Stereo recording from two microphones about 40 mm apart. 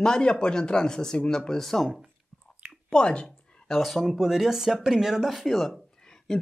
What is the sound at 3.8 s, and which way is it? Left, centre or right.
Speech, centre.